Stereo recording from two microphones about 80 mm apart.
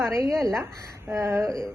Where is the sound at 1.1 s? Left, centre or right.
Right.